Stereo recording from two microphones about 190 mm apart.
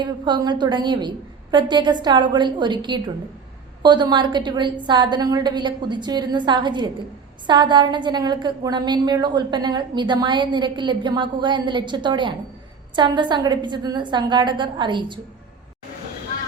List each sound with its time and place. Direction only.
0.0 s a woman's voice: 25° right (ahead or behind)